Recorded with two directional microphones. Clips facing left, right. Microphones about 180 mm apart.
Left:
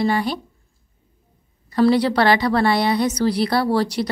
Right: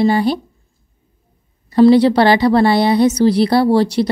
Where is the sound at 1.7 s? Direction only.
25° right (ahead or behind).